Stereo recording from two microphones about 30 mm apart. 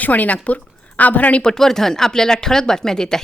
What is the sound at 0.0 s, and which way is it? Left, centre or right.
A woman's voice, left.